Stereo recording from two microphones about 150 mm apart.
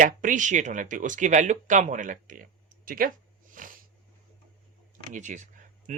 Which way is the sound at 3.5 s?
65° right (ahead or behind).